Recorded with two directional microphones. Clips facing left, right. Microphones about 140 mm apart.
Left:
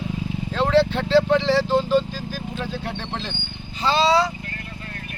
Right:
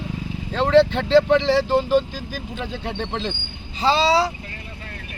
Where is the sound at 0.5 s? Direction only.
15° right (ahead or behind).